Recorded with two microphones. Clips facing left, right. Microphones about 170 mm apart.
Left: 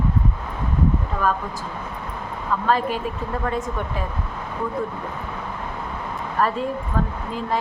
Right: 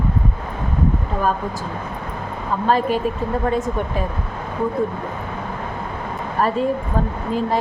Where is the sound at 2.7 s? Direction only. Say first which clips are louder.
Right 4 dB; 25° right (ahead or behind).